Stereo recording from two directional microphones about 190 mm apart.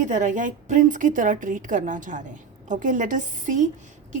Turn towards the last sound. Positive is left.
turn(degrees=-40)  # may be behind; listen again after turning